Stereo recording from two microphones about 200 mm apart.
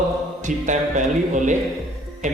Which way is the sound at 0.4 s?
40° right (ahead or behind).